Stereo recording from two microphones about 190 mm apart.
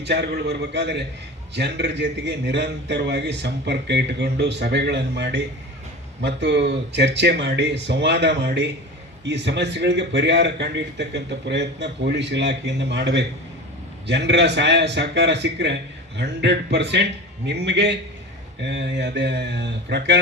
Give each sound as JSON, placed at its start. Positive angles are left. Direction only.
{"t": 0.0, "sound": "a man's voice", "side_deg": -60}